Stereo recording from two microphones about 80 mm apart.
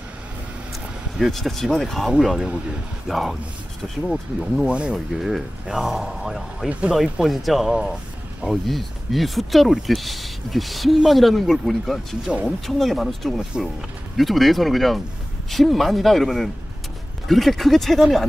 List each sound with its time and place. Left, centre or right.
1.1 s speech: centre
4.6 s speech: centre
4.9 s speech: centre
6.7 s speech: centre
7.0 s speech: centre